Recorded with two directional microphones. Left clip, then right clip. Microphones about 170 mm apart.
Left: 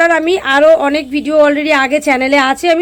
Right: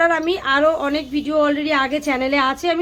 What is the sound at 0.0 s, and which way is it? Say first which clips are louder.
A woman's voice: left 7 dB; 30° left (ahead or behind).